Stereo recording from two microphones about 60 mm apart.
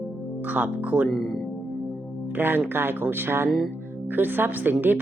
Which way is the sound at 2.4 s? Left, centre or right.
Right.